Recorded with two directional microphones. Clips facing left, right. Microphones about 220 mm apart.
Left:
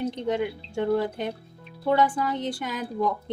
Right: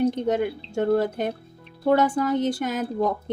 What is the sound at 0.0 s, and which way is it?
A woman's voice, 45° right (ahead or behind).